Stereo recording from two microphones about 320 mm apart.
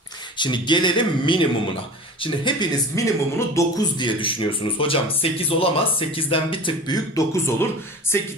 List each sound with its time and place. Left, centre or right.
0.4 s speech: centre